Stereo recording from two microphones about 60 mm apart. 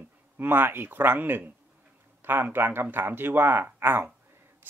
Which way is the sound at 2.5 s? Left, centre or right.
Right.